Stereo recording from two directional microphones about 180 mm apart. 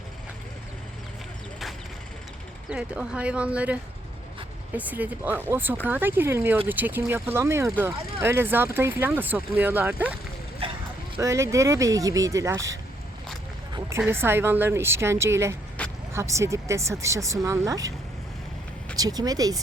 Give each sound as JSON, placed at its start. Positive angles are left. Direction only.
{"t": 2.6, "sound": "speech", "side_deg": -5}
{"t": 11.2, "sound": "speech", "side_deg": -15}
{"t": 14.1, "sound": "speech", "side_deg": -10}
{"t": 15.8, "sound": "vehicle", "side_deg": 5}
{"t": 16.1, "sound": "speech", "side_deg": -15}
{"t": 18.9, "sound": "speech", "side_deg": -20}